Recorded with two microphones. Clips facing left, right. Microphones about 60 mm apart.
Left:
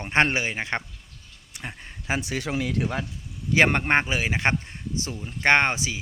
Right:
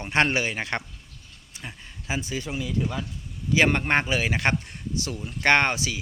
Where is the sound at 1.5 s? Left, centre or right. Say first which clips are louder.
Left 3 dB; left.